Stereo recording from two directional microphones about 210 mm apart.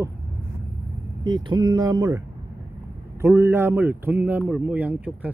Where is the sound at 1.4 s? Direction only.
20° right (ahead or behind).